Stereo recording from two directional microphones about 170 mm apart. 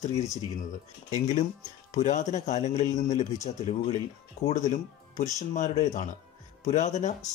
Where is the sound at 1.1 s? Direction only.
45° left (ahead or behind).